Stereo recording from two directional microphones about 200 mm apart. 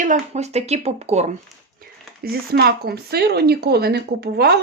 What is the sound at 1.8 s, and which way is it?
Speech, 50° right (ahead or behind).